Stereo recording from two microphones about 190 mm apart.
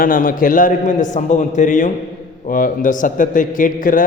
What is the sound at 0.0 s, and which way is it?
A man's voice, 45° left (ahead or behind).